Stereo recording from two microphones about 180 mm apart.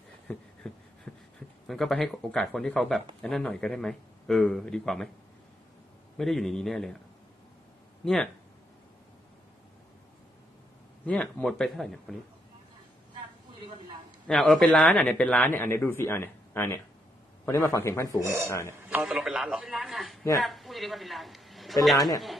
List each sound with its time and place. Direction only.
0.3 s a sound: 5° left (ahead or behind)
1.7 s speech: centre (ahead or behind)
6.1 s speech: centre (ahead or behind)
8.0 s speech: centre (ahead or behind)
11.1 s speech: 5° left (ahead or behind)
14.2 s a man's voice: 5° left (ahead or behind)
18.9 s a woman's voice: 5° right (ahead or behind)
21.9 s speech: 20° left (ahead or behind)